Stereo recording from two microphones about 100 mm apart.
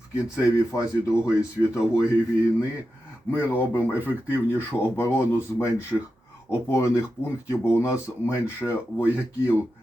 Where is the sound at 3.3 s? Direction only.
20° left (ahead or behind).